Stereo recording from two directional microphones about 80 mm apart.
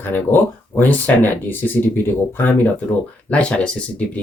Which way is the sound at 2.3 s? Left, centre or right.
Left.